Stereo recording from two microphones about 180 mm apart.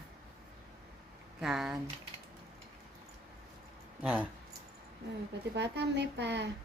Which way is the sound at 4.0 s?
10° right (ahead or behind).